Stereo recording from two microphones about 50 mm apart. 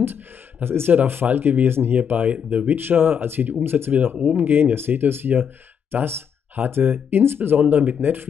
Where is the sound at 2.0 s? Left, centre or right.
Right.